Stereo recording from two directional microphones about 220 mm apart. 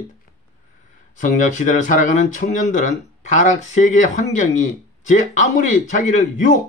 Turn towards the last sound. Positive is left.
turn(degrees=35)  # may be behind; listen again after turning